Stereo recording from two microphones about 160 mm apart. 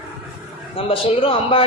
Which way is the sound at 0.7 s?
35° left (ahead or behind).